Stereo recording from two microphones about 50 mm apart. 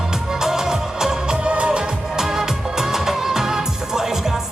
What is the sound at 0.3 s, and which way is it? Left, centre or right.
Music, centre.